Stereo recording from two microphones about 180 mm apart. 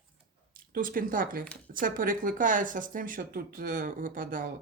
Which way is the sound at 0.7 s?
50° right (ahead or behind).